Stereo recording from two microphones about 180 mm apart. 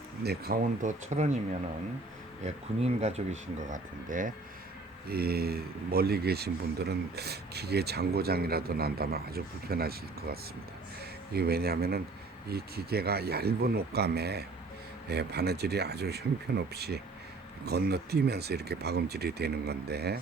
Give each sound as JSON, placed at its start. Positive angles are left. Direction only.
{"t": 0.2, "sound": "speech", "side_deg": -60}
{"t": 2.8, "sound": "speech", "side_deg": -35}
{"t": 3.7, "sound": "speech", "side_deg": -45}
{"t": 5.0, "sound": "speech", "side_deg": -60}
{"t": 11.3, "sound": "speech", "side_deg": -60}